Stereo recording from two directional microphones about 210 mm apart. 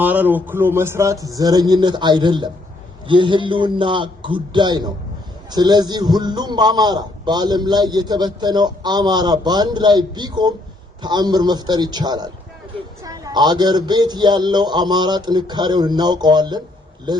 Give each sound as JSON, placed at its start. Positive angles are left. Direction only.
{"t": 0.0, "sound": "a man's voice", "side_deg": -10}